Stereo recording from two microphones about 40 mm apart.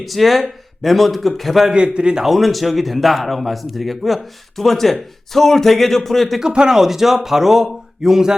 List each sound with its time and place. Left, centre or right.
0.0 s a man's voice: centre
1.7 s a man's voice: right
2.2 s a man's voice: centre
6.4 s a man's voice: centre